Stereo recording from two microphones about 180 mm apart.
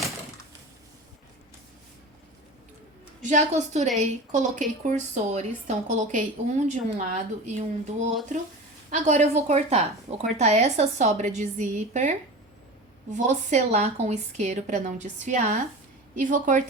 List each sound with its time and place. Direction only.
3.2 s a woman's voice: 40° right (ahead or behind)